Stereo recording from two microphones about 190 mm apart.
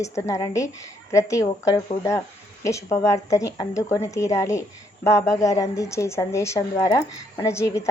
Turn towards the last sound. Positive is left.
turn(degrees=15)  # may be behind; listen again after turning